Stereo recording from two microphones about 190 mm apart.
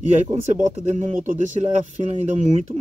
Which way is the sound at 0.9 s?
40° right (ahead or behind).